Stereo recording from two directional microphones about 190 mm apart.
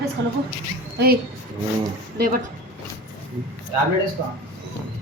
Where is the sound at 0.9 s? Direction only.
55° right (ahead or behind).